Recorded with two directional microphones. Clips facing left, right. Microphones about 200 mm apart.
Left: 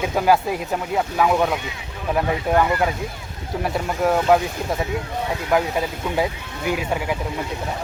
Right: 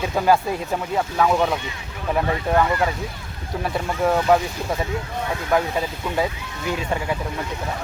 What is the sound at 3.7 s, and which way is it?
Speech, 5° left (ahead or behind).